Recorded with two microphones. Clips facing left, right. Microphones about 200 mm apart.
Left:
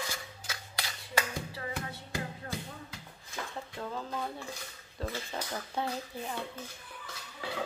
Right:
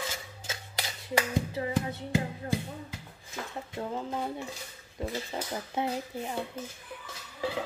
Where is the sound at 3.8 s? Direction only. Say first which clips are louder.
Right 4 dB; 20° right (ahead or behind).